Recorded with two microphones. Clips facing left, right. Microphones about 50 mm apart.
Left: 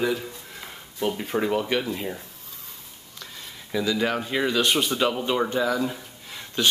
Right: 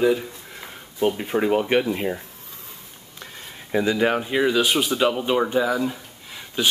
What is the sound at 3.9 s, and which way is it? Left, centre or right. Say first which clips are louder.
Speech: right 4 dB; centre.